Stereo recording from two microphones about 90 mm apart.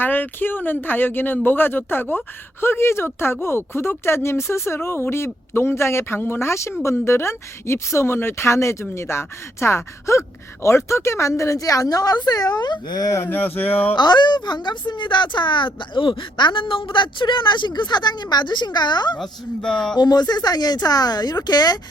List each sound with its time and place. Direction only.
0.0 s speech: 20° left (ahead or behind); by 13.2 s 40° left (ahead or behind)
13.2 s speech: 20° left (ahead or behind)
13.9 s a woman's voice: 55° left (ahead or behind)
19.1 s speech: 10° left (ahead or behind)
20.0 s speech: 50° left (ahead or behind)